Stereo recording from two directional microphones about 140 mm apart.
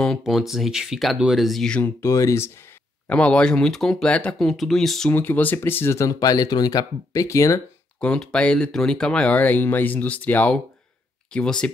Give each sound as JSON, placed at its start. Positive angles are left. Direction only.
{"t": 0.0, "sound": "speech", "side_deg": 0}
{"t": 2.0, "sound": "speech", "side_deg": 20}
{"t": 3.1, "sound": "speech", "side_deg": 10}
{"t": 5.1, "sound": "speech", "side_deg": 15}
{"t": 8.0, "sound": "speech", "side_deg": 5}